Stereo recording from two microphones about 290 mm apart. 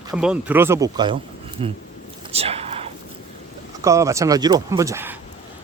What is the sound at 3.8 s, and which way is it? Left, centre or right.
Speech, centre.